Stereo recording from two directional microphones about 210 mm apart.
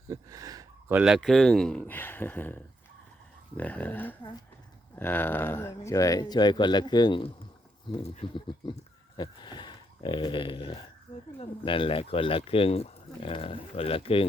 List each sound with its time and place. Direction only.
0.1 s speech: 15° right (ahead or behind); by 2.6 s 10° left (ahead or behind)
3.6 s speech: 10° left (ahead or behind); by 14.3 s 25° left (ahead or behind)